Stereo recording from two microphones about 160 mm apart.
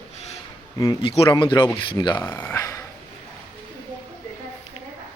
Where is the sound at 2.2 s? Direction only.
10° left (ahead or behind).